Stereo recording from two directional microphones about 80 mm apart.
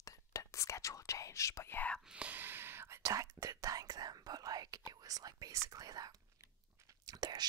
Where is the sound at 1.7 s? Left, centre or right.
Left.